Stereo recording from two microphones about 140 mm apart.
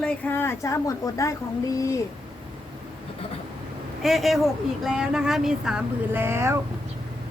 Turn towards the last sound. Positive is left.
turn(degrees=-20)  # may be behind; listen again after turning